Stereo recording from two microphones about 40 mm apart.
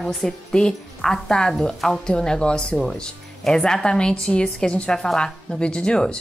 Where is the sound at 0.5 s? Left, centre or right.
Centre.